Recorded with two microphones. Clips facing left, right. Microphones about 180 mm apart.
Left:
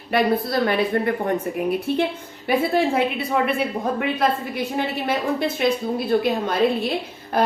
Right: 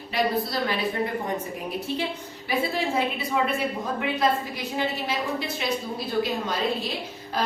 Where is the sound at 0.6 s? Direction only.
55° left (ahead or behind).